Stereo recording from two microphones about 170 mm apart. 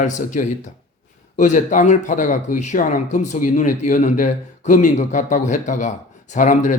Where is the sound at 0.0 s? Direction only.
45° left (ahead or behind).